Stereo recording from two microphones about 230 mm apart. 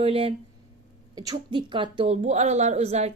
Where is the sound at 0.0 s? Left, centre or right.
Right.